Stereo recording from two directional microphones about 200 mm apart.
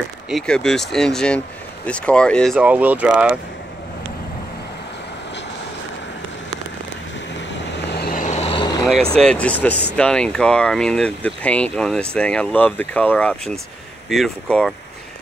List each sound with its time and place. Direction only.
0.3 s speech: centre (ahead or behind)
7.9 s vehicle: 50° left (ahead or behind); by 8.7 s 25° left (ahead or behind)
9.2 s speech: 5° left (ahead or behind)